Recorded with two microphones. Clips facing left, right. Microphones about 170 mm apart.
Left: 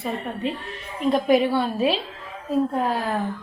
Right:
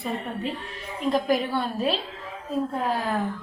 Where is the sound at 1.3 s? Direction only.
Centre (ahead or behind).